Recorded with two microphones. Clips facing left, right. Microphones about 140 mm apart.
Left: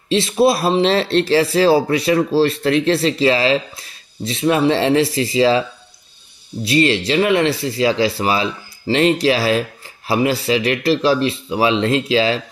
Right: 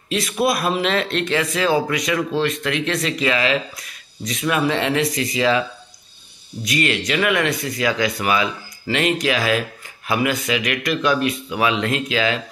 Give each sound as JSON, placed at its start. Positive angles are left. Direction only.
{"t": 0.1, "sound": "speech", "side_deg": 30}